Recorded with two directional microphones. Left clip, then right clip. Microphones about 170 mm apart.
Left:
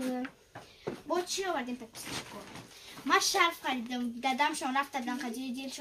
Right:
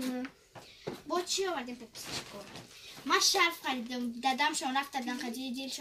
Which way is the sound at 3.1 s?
25° left (ahead or behind).